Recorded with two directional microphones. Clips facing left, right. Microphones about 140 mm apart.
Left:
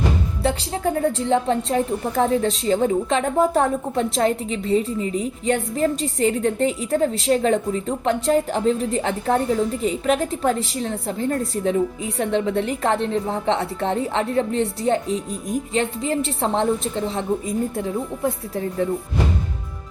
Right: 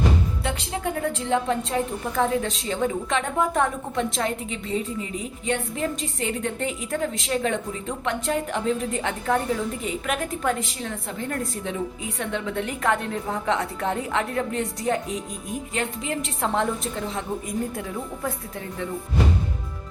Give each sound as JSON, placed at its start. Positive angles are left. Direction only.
{"t": 0.4, "sound": "a woman's voice", "side_deg": 35}
{"t": 17.7, "sound": "speech", "side_deg": 25}